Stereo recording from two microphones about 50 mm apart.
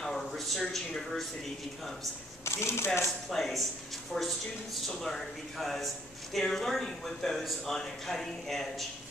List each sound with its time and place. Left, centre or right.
0.0 s a sound: centre
2.4 s speech: left
3.3 s speech: centre